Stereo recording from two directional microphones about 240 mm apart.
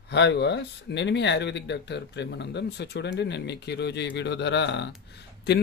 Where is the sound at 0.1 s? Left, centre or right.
Left.